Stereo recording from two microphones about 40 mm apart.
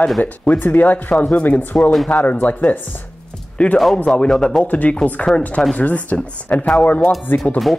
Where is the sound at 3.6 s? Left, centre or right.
Centre.